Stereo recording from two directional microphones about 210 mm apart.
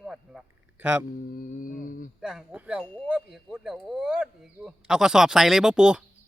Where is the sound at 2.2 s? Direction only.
5° right (ahead or behind).